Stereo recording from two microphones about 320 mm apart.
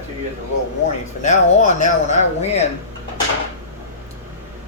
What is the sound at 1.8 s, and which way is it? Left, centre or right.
Speech, left.